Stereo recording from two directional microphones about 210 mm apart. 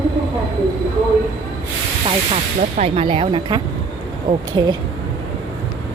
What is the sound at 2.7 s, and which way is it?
A woman's voice, 30° right (ahead or behind).